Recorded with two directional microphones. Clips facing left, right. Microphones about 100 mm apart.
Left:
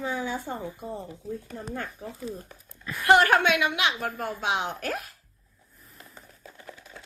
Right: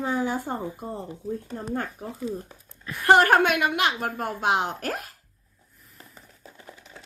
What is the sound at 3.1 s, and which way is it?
A woman's voice, 40° right (ahead or behind).